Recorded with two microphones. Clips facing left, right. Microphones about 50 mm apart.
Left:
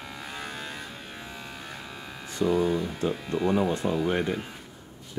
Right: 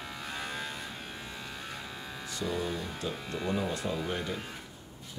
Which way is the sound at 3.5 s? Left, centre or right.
Left.